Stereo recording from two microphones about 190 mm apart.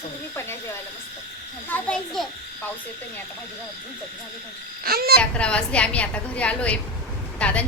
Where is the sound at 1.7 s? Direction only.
5° left (ahead or behind).